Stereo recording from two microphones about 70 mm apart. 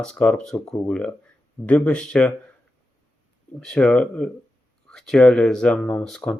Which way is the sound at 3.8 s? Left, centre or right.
Centre.